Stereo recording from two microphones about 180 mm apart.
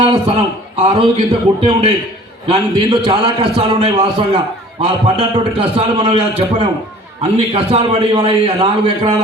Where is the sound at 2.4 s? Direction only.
25° right (ahead or behind).